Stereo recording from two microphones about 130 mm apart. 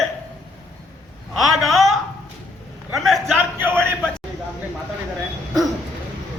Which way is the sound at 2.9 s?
Centre (ahead or behind).